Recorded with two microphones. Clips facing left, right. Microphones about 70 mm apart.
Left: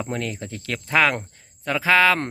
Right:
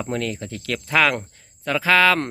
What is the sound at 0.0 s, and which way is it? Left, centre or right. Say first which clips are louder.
Speech: right 2 dB; centre.